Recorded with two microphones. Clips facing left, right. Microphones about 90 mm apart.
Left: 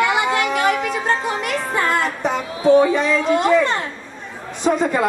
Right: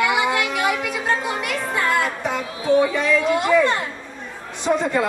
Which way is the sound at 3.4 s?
10° right (ahead or behind).